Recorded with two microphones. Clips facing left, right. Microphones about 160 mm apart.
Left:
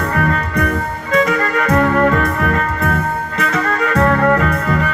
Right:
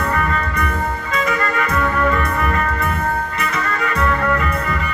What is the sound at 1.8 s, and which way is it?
Music, 60° left (ahead or behind).